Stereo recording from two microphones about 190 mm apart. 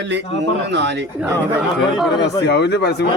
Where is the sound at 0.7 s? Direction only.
65° right (ahead or behind).